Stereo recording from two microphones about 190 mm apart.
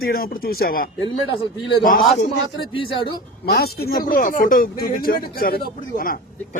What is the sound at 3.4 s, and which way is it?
Speech, 55° left (ahead or behind).